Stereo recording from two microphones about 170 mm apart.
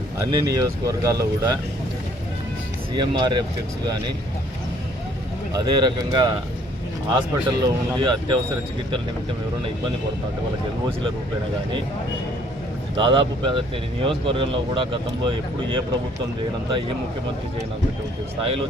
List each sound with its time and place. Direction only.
0.2 s speech: 20° right (ahead or behind)
2.9 s speech: 25° right (ahead or behind)
5.6 s speech: 25° right (ahead or behind)
13.0 s speech: 30° right (ahead or behind)